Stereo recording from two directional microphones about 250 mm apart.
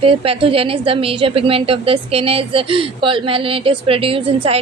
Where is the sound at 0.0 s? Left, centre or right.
Right.